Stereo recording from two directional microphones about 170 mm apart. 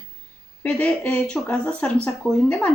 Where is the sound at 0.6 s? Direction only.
10° left (ahead or behind).